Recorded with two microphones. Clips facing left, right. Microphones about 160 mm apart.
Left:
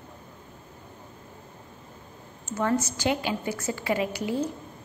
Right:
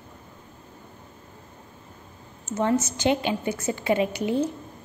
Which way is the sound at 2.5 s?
20° right (ahead or behind).